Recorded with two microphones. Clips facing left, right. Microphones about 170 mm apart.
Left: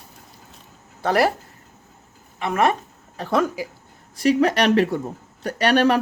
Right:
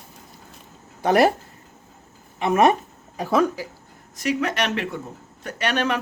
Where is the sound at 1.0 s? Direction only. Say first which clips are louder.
Right 2 dB; 20° right (ahead or behind).